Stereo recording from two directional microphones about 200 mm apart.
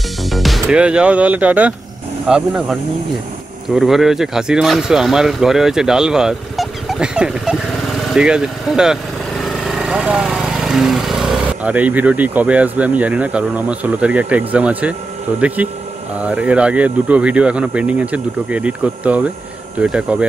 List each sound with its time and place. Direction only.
0.3 s speech: centre (ahead or behind)